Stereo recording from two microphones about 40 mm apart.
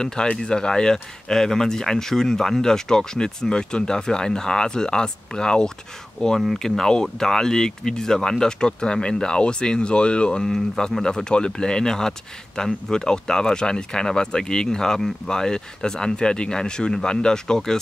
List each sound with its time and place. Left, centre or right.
0.0 s speech: centre